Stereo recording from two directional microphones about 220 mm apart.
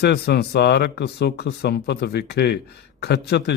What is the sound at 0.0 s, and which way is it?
A man's voice, 50° left (ahead or behind).